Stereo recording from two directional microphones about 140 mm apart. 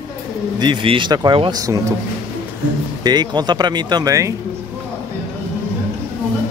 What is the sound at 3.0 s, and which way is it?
Speech, 30° right (ahead or behind).